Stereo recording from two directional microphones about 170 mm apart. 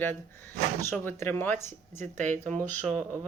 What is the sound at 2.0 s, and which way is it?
Speech, 45° right (ahead or behind).